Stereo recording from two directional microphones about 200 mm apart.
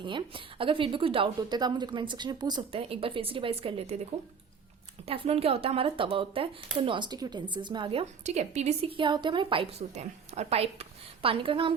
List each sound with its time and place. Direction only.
0.0 s speech: 25° right (ahead or behind)
5.0 s speech: 30° right (ahead or behind)